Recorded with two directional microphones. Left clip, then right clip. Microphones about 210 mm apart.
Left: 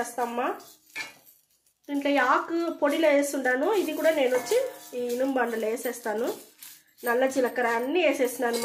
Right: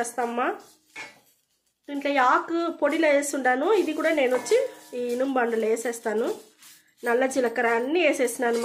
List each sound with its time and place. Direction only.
0.0 s speech: 35° right (ahead or behind)
1.9 s speech: 30° right (ahead or behind)